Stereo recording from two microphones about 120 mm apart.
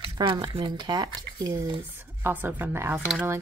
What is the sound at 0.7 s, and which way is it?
Speech, 35° right (ahead or behind).